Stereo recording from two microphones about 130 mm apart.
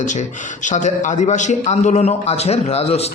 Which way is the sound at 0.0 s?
70° left (ahead or behind).